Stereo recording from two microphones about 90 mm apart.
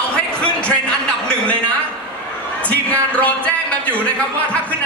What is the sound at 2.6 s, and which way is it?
Music, 15° left (ahead or behind).